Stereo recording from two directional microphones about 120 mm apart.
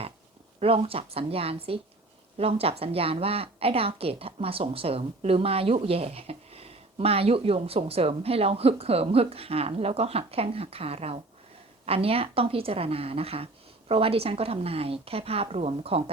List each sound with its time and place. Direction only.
0.6 s a woman's voice: 50° right (ahead or behind)